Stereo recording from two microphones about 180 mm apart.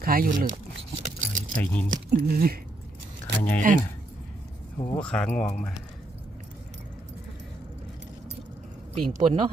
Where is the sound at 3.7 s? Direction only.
50° right (ahead or behind).